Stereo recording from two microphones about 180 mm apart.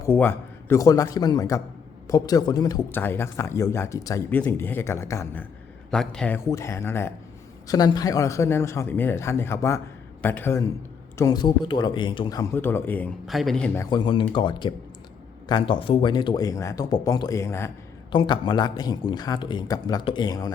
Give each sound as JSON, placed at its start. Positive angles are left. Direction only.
{"t": 0.0, "sound": "a man's voice", "side_deg": 15}
{"t": 13.2, "sound": "a man's voice", "side_deg": 0}
{"t": 13.9, "sound": "speech", "side_deg": 25}
{"t": 18.1, "sound": "speech", "side_deg": 25}